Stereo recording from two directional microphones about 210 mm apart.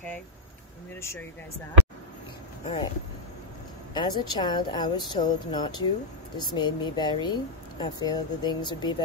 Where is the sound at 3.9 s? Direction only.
20° left (ahead or behind).